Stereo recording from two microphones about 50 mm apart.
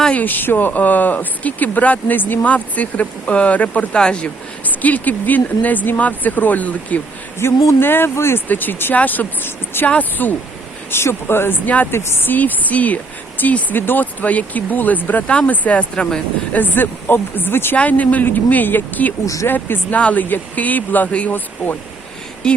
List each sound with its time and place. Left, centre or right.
0.1 s speech: left; by 4.3 s centre
4.6 s speech: left
7.3 s speech: left
8.1 s speech: left
8.4 s speech: left
10.9 s speech: left
11.9 s speech: left
12.3 s speech: left
16.5 s speech: left
17.7 s speech: left
19.9 s speech: left
22.4 s speech: centre